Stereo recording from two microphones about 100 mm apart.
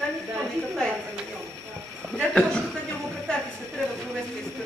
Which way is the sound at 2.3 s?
10° left (ahead or behind).